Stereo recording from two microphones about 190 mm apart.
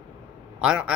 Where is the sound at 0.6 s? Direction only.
5° right (ahead or behind).